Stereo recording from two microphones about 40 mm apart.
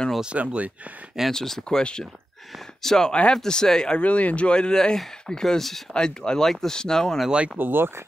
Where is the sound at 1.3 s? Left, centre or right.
Centre.